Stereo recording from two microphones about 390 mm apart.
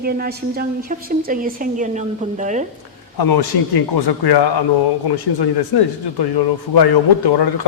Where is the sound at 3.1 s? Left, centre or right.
Left.